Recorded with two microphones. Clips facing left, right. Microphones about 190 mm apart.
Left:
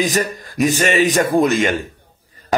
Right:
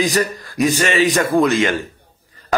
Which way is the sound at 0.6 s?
40° left (ahead or behind).